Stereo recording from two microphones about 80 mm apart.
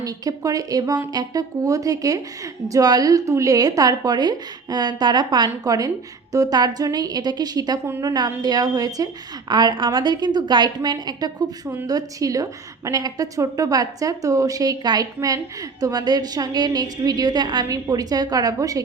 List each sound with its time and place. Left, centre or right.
0.0 s a woman's voice: right
5.6 s a woman's voice: right
9.5 s a woman's voice: right
17.7 s a woman's voice: right